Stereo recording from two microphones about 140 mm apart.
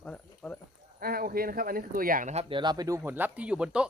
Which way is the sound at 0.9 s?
90° right.